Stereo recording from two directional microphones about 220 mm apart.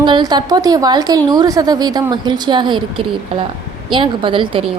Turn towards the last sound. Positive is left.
turn(degrees=-25)  # may be behind; listen again after turning